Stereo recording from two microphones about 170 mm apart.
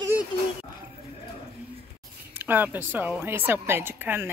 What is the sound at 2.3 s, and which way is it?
A woman's voice, 10° right (ahead or behind).